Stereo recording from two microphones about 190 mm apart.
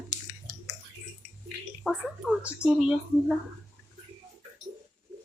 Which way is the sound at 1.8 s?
5° right (ahead or behind).